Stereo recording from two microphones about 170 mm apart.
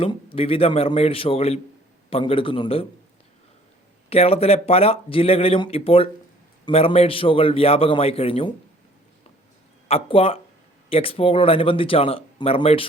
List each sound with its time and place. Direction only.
0.0 s speech: 30° left (ahead or behind)
4.1 s speech: 35° left (ahead or behind)
9.9 s speech: 35° left (ahead or behind)